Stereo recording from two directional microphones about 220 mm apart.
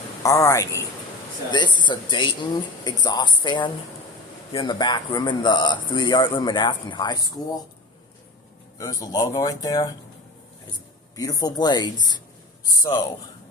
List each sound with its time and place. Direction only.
0.2 s speech: 15° left (ahead or behind)
8.8 s speech: 15° left (ahead or behind)
11.2 s speech: 15° left (ahead or behind)